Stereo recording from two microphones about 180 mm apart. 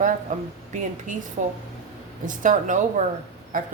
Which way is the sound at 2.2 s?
45° right (ahead or behind).